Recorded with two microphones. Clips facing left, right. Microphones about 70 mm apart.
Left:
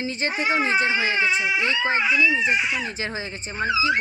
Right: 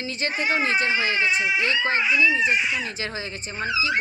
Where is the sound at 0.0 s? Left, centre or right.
Left.